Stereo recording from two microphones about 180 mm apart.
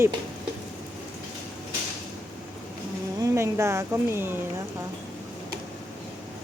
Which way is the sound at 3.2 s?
15° right (ahead or behind).